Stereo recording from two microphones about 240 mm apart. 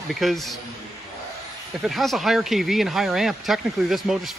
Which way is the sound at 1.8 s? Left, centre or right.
Centre.